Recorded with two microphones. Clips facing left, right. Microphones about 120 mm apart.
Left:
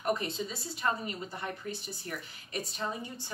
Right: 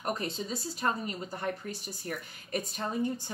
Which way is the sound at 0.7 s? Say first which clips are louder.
Even; 40° right (ahead or behind).